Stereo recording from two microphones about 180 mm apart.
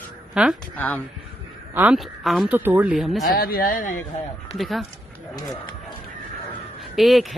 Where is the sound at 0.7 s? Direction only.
10° left (ahead or behind).